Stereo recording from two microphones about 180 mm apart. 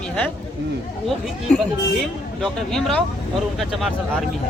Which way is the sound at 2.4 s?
5° left (ahead or behind).